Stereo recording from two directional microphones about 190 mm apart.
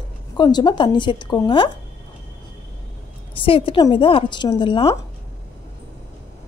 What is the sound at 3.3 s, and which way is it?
A woman's voice, 30° left (ahead or behind).